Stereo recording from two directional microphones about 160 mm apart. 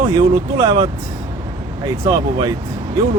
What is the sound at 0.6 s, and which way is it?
Speech, 30° right (ahead or behind).